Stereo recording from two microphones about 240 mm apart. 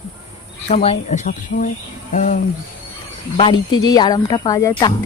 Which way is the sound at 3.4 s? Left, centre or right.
Centre.